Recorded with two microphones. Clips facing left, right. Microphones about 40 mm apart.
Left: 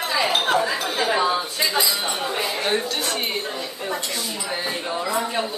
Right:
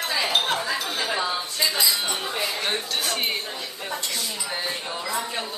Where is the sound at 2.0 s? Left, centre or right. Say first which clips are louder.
Left 3 dB; centre.